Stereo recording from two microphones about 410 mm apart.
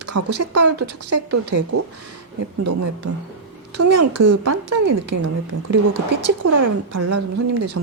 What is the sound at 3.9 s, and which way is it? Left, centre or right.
Speech, right.